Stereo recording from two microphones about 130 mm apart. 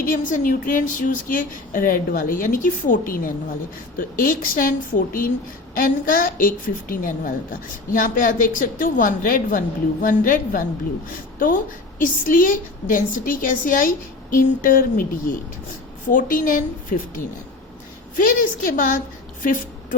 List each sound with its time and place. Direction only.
0.1 s a woman's voice: 90° left
18.2 s a woman's voice: 90° left